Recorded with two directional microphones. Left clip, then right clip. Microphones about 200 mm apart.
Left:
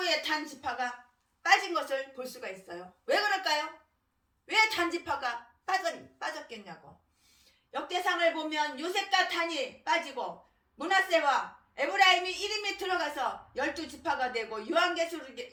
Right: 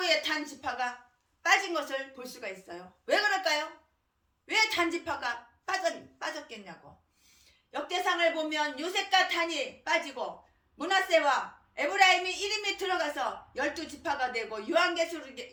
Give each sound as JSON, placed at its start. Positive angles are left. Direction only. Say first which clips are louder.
{"t": 0.0, "sound": "a woman's voice", "louder": "right 2 dB", "side_deg": -25}